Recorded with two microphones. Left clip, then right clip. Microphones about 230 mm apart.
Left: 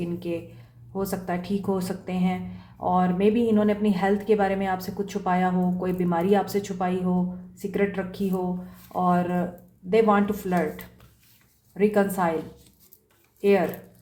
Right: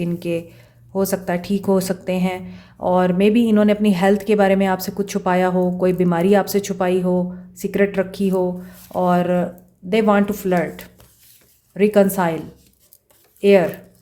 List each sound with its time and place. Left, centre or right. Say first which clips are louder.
0.0 s speech: right 7 dB; right
13.4 s speech: right 8 dB; right